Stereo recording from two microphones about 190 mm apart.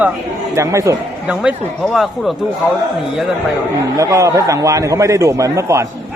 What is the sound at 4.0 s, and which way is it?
A man's voice, 15° right (ahead or behind).